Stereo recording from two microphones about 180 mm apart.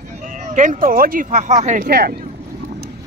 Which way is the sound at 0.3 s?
45° right (ahead or behind).